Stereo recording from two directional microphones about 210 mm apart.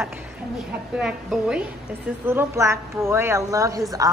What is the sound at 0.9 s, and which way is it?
A woman's voice, 5° right (ahead or behind).